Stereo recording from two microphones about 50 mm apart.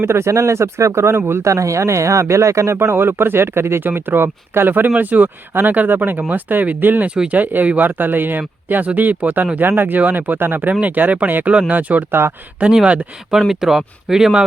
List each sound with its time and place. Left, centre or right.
0.0 s speech: right
1.3 s speech: right
3.8 s speech: right
12.7 s speech: right
13.5 s speech: centre